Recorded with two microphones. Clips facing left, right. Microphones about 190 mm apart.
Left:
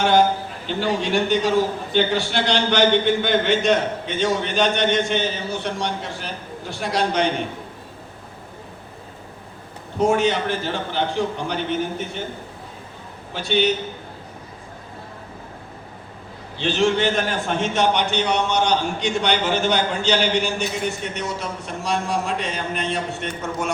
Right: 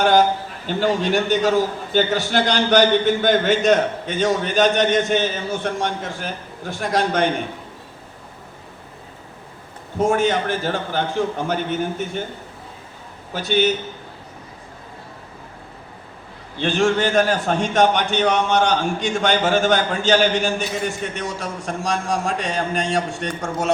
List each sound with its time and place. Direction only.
0.7 s a man's voice: 45° right (ahead or behind)
10.0 s a man's voice: 50° right (ahead or behind)
13.3 s a man's voice: 45° right (ahead or behind)
16.6 s a man's voice: 50° right (ahead or behind)